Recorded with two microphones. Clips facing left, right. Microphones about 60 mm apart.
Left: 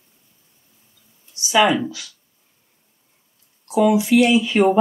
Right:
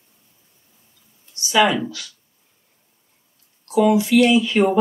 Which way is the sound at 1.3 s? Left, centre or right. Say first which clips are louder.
Left 1 dB; centre.